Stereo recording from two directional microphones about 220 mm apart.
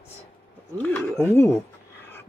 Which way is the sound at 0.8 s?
10° left (ahead or behind).